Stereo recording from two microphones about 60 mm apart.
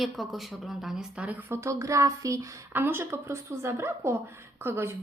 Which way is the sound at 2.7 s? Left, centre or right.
Right.